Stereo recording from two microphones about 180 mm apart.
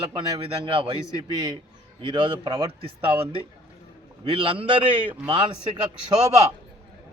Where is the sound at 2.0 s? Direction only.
25° right (ahead or behind).